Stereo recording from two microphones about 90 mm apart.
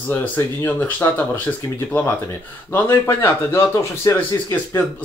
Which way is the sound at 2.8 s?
30° left (ahead or behind).